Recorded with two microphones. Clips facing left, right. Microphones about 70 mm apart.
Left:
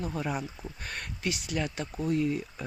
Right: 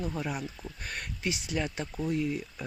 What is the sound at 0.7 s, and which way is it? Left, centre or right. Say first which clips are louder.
Speech: even; centre.